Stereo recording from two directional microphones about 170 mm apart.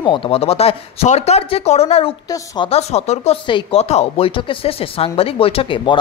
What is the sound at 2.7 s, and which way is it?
Speech, 40° left (ahead or behind).